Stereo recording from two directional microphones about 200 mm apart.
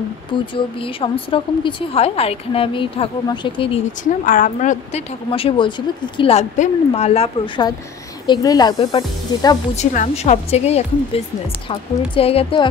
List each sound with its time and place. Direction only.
0.3 s a woman's voice: 25° left (ahead or behind)
4.3 s a woman's voice: 40° left (ahead or behind); by 9.6 s 20° left (ahead or behind)
9.8 s a woman's voice: 35° left (ahead or behind)